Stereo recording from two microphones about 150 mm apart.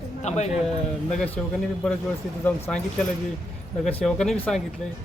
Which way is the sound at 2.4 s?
10° left (ahead or behind).